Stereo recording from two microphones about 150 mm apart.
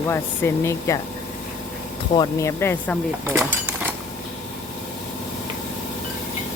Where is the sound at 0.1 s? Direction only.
20° left (ahead or behind).